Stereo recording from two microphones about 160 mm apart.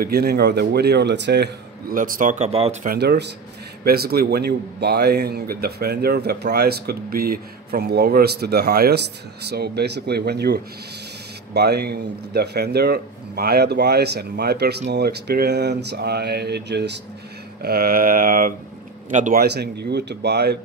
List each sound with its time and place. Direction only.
0.0 s speech: 80° right; by 2.8 s 40° right (ahead or behind)
2.8 s speech: 80° right
3.8 s speech: 75° right (ahead or behind); by 17.0 s 90° right
17.6 s a man's voice: 70° right (ahead or behind); by 19.4 s 50° right (ahead or behind)
19.4 s speech: 90° right